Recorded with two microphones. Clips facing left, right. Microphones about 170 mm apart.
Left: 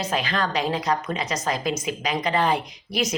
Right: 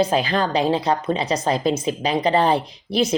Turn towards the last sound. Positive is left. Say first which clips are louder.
# right 6 dB
turn(degrees=-30)  # may be behind; listen again after turning